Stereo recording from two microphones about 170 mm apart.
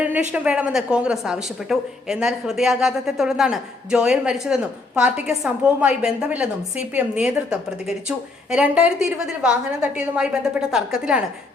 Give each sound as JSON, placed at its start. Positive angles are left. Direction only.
{"t": 0.3, "sound": "a woman's voice", "side_deg": -5}